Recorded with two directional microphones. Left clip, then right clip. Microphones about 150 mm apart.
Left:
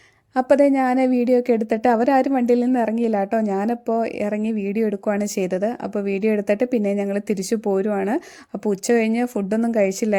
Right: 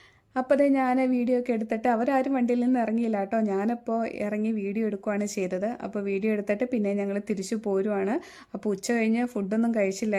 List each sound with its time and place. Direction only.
0.3 s a woman's voice: 25° left (ahead or behind)